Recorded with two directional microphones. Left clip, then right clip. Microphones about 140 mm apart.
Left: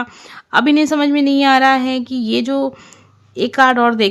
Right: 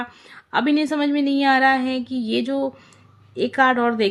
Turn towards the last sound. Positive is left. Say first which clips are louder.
# left 6 dB
turn(degrees=55)  # may be behind; listen again after turning